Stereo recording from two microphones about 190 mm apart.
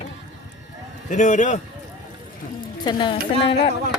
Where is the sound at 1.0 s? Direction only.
40° left (ahead or behind).